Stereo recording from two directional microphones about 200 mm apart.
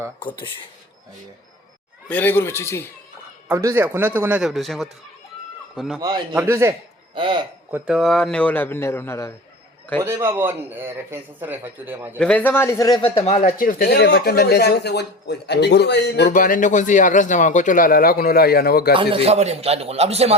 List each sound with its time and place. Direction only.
0.2 s speech: 25° left (ahead or behind)
2.0 s a man's voice: 10° left (ahead or behind)
3.5 s a man's voice: 15° right (ahead or behind); by 6.0 s centre (ahead or behind)
6.3 s a man's voice: 15° right (ahead or behind)
7.7 s a man's voice: 5° right (ahead or behind); by 9.3 s 15° left (ahead or behind)
10.0 s a man's voice: 15° right (ahead or behind)
12.2 s a man's voice: 5° left (ahead or behind)
13.0 s speech: 30° left (ahead or behind); by 16.3 s 55° left (ahead or behind)
16.3 s a man's voice: 40° left (ahead or behind)
18.9 s a man's voice: 30° right (ahead or behind)